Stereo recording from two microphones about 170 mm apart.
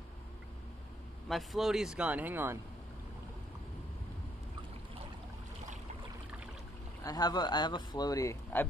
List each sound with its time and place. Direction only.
1.3 s speech: centre (ahead or behind)
7.0 s speech: 20° left (ahead or behind)